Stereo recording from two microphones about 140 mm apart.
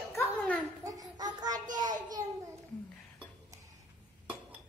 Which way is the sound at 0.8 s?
25° right (ahead or behind).